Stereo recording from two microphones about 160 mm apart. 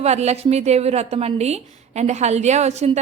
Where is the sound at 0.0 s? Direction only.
45° right (ahead or behind).